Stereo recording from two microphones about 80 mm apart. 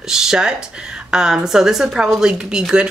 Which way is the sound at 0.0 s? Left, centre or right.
Centre.